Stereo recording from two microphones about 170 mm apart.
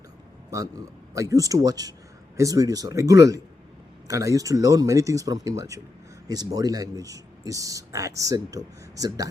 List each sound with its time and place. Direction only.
0.5 s speech: 20° right (ahead or behind)